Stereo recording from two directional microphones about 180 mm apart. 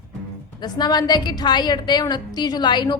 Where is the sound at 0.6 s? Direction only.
25° left (ahead or behind).